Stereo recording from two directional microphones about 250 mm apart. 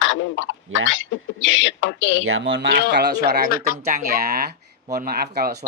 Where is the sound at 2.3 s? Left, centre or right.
Right.